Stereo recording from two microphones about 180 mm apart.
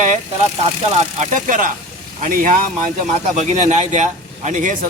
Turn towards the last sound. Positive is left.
turn(degrees=-45)  # may be behind; listen again after turning